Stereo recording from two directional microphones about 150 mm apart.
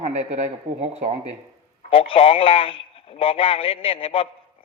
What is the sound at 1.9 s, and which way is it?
A man's voice, 40° left (ahead or behind).